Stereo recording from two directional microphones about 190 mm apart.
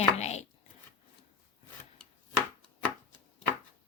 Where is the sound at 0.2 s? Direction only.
35° left (ahead or behind).